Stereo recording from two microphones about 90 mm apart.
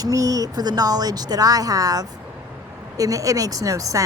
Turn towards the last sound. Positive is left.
turn(degrees=-40)  # may be behind; listen again after turning